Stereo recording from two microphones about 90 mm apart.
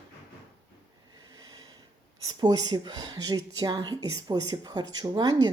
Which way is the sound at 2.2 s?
50° right (ahead or behind).